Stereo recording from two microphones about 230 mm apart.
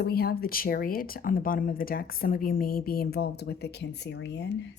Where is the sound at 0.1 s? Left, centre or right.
Left.